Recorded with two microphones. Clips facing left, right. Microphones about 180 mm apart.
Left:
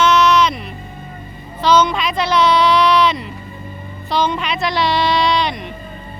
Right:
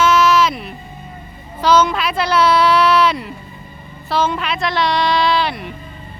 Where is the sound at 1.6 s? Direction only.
5° right (ahead or behind).